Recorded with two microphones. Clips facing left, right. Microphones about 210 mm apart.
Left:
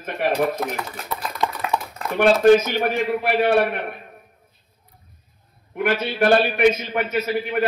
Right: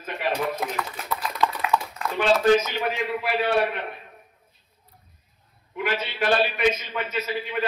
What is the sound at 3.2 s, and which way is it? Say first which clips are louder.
Speech: left 4 dB; 60° left (ahead or behind).